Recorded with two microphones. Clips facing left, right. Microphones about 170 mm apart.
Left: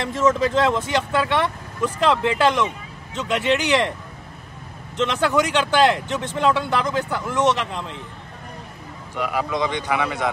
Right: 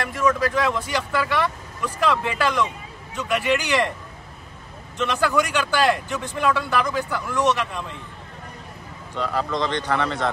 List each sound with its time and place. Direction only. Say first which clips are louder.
0.0 s speech: left 2 dB; 25° left (ahead or behind)
4.9 s speech: left 2 dB; 20° left (ahead or behind)
9.1 s speech: left 1 dB; 10° left (ahead or behind)